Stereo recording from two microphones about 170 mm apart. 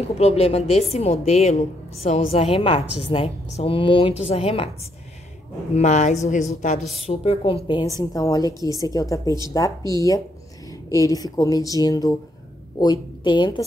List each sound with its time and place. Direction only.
0.2 s a woman's voice: 35° left (ahead or behind)
5.8 s a woman's voice: 45° left (ahead or behind)
6.8 s speech: centre (ahead or behind)
7.1 s a woman's voice: 35° left (ahead or behind)